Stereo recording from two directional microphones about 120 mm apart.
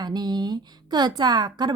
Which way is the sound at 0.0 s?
35° right (ahead or behind).